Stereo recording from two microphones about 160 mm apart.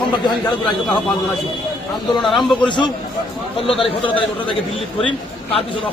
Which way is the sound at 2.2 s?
Centre (ahead or behind).